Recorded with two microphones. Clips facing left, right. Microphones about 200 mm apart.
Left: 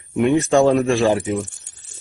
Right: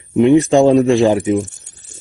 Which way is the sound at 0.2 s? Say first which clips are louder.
Right 5 dB; 20° right (ahead or behind).